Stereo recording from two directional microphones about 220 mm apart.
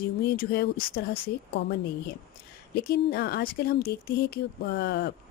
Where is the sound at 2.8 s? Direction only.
45° left (ahead or behind).